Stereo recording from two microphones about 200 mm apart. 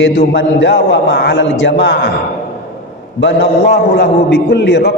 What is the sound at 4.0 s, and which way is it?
Speech, 55° left (ahead or behind).